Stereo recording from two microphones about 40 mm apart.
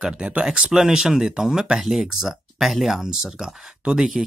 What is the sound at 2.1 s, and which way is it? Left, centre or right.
Speech, centre.